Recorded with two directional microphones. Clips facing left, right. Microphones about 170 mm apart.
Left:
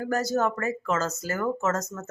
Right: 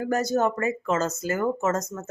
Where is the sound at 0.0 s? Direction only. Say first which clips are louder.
Right 2 dB; 20° right (ahead or behind).